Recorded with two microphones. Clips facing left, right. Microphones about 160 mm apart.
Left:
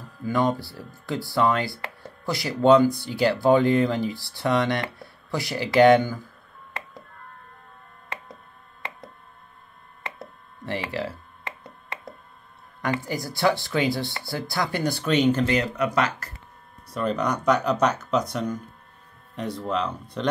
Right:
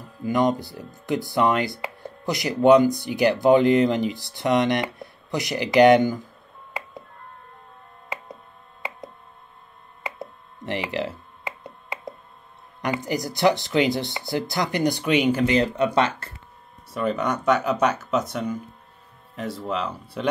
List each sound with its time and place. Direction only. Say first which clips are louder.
0.2 s speech: right 2 dB; 15° right (ahead or behind)
10.6 s a sound: right 2 dB; 20° right (ahead or behind)
12.8 s speech: right 2 dB; 20° right (ahead or behind)
15.5 s speech: right 3 dB; 30° right (ahead or behind)
16.9 s speech: right 1 dB; 5° right (ahead or behind)